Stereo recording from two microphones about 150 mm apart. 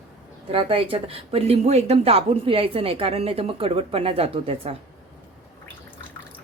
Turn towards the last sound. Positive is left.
turn(degrees=-40)  # may be behind; listen again after turning